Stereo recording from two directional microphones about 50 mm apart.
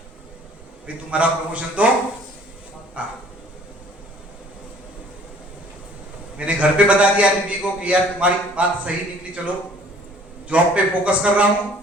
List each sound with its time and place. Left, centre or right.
0.9 s a man's voice: right
3.0 s a man's voice: right
6.3 s a man's voice: right
10.5 s a man's voice: right